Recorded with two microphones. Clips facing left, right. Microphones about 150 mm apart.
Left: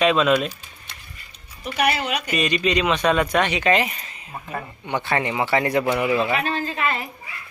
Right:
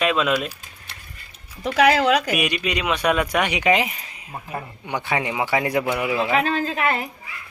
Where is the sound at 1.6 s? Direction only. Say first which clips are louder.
Right 6 dB; 90° right.